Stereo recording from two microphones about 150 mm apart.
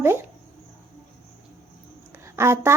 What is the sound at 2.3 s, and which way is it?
Speech, 15° right (ahead or behind).